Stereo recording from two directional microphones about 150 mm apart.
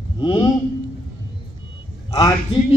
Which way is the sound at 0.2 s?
35° left (ahead or behind).